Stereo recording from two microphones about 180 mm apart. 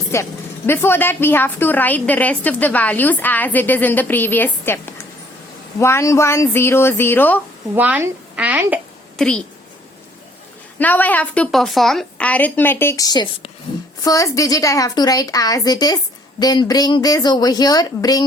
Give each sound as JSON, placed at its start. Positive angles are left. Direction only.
{"t": 0.1, "sound": "a woman's voice", "side_deg": 15}
{"t": 7.8, "sound": "a woman's voice", "side_deg": -10}
{"t": 9.1, "sound": "a woman's voice", "side_deg": 5}
{"t": 10.8, "sound": "a woman's voice", "side_deg": 10}